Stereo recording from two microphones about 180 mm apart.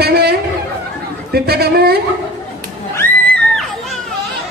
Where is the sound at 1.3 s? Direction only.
60° right (ahead or behind).